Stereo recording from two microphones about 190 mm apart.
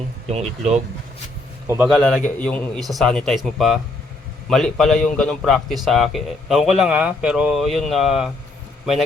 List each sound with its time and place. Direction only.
0.3 s speech: 35° right (ahead or behind)
1.6 s speech: 10° right (ahead or behind)
1.9 s a man's voice: centre (ahead or behind)